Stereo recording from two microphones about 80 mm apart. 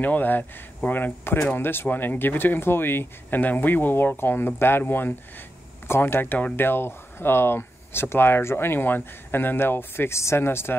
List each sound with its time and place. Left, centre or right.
0.0 s speech: left